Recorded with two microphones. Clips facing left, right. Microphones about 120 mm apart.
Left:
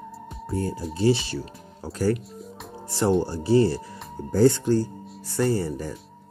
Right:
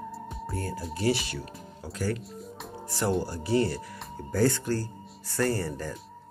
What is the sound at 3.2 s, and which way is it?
Speech, 30° left (ahead or behind).